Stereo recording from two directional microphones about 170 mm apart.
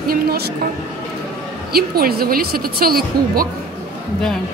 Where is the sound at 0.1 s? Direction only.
60° right (ahead or behind).